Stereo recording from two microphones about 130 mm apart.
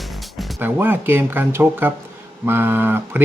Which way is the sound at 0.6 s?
15° right (ahead or behind).